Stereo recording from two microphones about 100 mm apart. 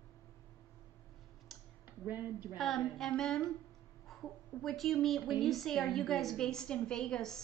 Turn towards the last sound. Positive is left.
turn(degrees=5)  # may be behind; listen again after turning